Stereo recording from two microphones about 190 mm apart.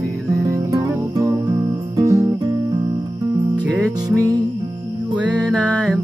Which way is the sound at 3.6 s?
5° right (ahead or behind).